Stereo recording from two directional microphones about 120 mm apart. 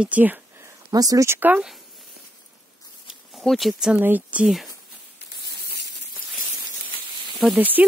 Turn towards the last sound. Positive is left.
turn(degrees=-15)  # may be behind; listen again after turning